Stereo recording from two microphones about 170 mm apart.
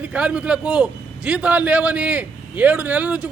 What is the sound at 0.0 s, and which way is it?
A man's voice, 5° right (ahead or behind).